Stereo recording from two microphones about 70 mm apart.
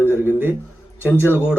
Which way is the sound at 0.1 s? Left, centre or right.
Right.